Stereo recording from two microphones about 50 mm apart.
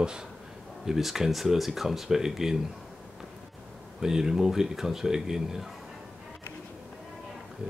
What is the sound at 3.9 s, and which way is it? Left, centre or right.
Speech, centre.